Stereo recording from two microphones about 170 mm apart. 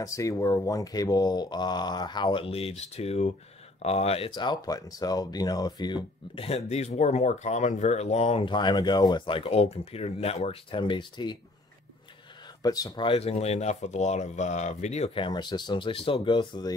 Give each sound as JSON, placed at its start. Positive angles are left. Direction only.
{"t": 0.0, "sound": "speech", "side_deg": 20}
{"t": 12.6, "sound": "speech", "side_deg": 20}